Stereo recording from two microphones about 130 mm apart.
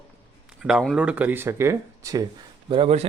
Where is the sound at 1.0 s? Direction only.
10° right (ahead or behind); by 2.2 s 25° right (ahead or behind).